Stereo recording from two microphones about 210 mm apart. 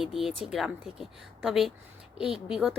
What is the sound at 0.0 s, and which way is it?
A woman's voice, centre (ahead or behind).